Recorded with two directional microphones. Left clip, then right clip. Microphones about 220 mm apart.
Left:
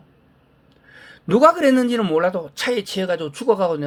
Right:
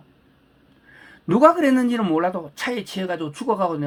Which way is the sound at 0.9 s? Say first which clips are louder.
Left 3 dB; 40° left (ahead or behind).